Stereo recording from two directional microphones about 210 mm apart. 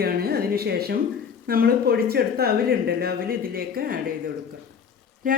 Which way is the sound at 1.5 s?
45° right (ahead or behind).